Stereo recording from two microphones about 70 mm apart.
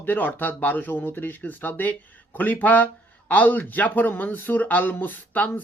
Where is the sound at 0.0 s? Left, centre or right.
Left.